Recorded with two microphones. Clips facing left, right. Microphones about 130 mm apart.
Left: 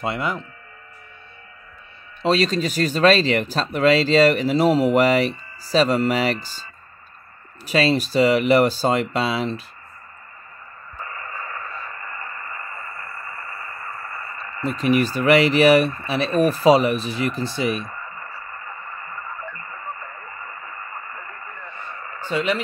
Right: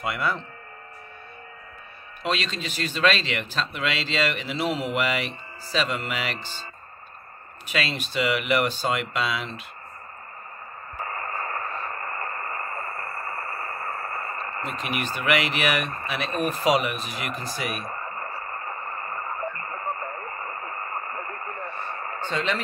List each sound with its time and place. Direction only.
0.0 s speech: 25° left (ahead or behind)
2.2 s speech: 40° left (ahead or behind)
7.6 s speech: 35° left (ahead or behind)
11.1 s radio: 45° right (ahead or behind)
14.6 s speech: 35° left (ahead or behind)
17.9 s radio: 45° right (ahead or behind)
22.3 s speech: 10° left (ahead or behind)